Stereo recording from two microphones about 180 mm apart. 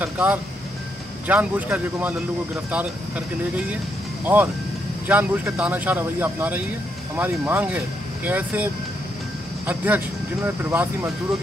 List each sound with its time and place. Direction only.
0.0 s speech: 10° right (ahead or behind)
4.2 s speech: 10° right (ahead or behind)
9.7 s speech: 10° right (ahead or behind)